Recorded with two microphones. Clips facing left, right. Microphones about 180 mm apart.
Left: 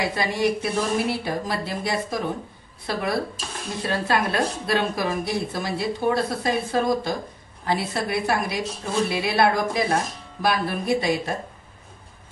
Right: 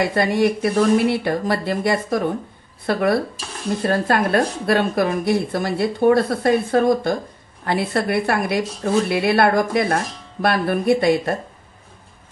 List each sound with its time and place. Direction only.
0.0 s speech: 55° right (ahead or behind)